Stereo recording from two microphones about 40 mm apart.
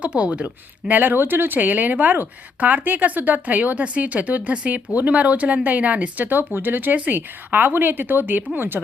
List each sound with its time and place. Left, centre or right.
0.0 s speech: right
1.2 s speech: right
1.5 s speech: right
6.2 s speech: right
6.9 s speech: right